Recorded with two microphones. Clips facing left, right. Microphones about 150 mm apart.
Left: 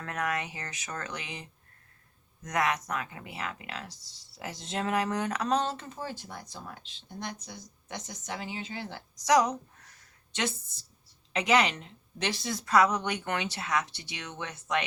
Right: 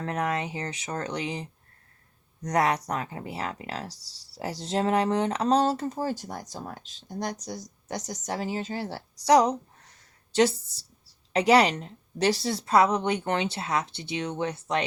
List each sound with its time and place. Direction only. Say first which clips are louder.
0.0 s speech: right 4 dB; 30° right (ahead or behind)